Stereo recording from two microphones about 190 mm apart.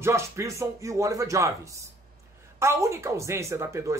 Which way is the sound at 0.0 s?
15° right (ahead or behind).